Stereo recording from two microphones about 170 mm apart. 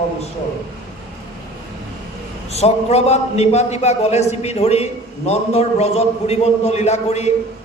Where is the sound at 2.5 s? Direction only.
40° left (ahead or behind).